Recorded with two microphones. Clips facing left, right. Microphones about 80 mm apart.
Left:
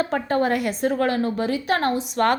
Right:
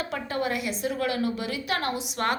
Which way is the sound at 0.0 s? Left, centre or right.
Left.